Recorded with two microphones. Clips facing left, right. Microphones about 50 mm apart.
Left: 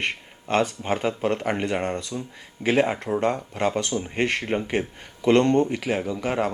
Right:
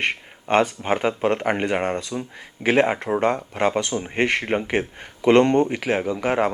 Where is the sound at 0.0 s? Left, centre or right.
Right.